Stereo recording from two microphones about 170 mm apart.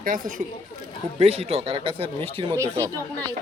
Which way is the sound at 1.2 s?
40° right (ahead or behind).